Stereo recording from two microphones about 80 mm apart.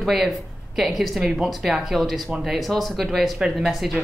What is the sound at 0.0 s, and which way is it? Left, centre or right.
Speech, centre.